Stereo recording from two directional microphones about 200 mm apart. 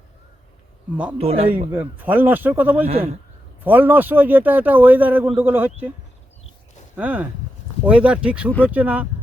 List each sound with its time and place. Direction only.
1.2 s a man's voice: 30° right (ahead or behind)
1.7 s speech: 10° right (ahead or behind)
6.9 s speech: 10° right (ahead or behind)